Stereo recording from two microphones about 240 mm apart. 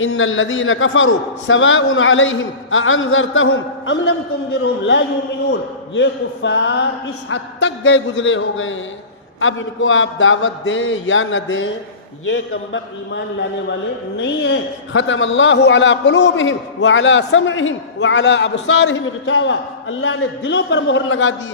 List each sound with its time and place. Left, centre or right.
0.0 s a man's voice: left
5.5 s a man's voice: left